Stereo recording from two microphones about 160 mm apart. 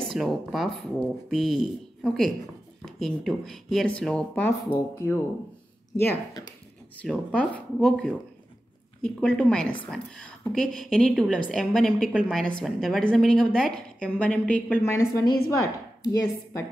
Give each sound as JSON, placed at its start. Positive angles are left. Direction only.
{"t": 0.1, "sound": "a woman's voice", "side_deg": 0}
{"t": 7.0, "sound": "a woman's voice", "side_deg": 5}
{"t": 14.9, "sound": "a woman's voice", "side_deg": 20}